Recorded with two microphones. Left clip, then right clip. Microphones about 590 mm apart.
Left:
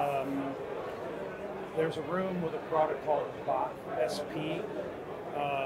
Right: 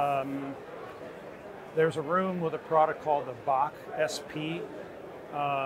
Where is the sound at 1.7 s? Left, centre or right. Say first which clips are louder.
Right 6 dB; right.